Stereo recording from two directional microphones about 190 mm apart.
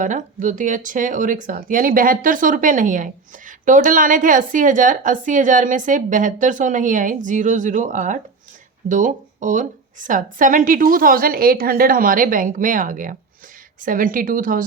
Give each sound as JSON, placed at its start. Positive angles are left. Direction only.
{"t": 0.0, "sound": "speech", "side_deg": -40}